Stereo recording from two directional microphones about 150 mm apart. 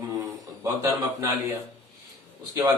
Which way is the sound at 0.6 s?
20° right (ahead or behind).